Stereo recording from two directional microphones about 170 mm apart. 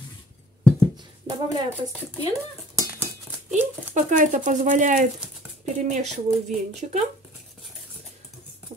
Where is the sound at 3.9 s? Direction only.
50° right (ahead or behind).